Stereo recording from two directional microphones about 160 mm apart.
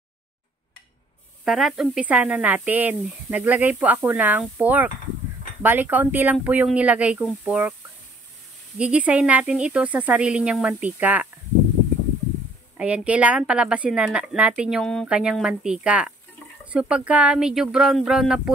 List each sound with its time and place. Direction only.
1.4 s speech: centre (ahead or behind)
8.7 s speech: 5° right (ahead or behind)
12.7 s speech: 10° right (ahead or behind)